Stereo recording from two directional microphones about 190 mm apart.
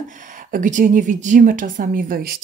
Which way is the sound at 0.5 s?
45° right (ahead or behind).